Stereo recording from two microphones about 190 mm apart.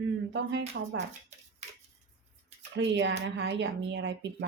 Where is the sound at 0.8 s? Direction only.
60° right (ahead or behind).